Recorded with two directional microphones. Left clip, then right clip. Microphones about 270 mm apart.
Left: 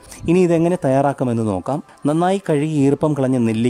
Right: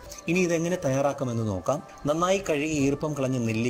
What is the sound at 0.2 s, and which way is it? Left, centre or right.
Speech, left.